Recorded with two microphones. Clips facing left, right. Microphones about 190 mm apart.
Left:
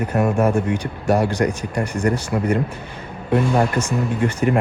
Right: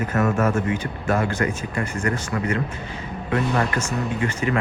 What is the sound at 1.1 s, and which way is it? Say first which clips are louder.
Speech: left 4 dB; 10° left (ahead or behind).